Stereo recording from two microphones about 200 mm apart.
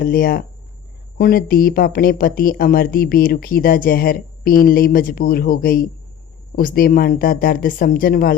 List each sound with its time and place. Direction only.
0.0 s speech: 45° left (ahead or behind)